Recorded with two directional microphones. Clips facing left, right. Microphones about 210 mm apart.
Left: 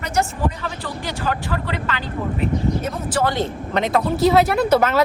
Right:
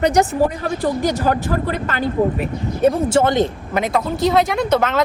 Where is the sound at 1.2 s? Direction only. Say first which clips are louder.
Right 5 dB; 45° right (ahead or behind).